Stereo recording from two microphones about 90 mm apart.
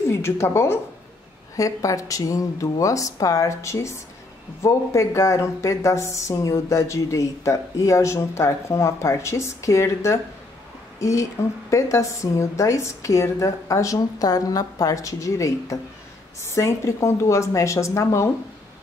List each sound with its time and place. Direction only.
0.1 s a woman's voice: 30° left (ahead or behind)